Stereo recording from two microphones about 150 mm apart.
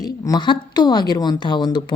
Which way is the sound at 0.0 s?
25° left (ahead or behind).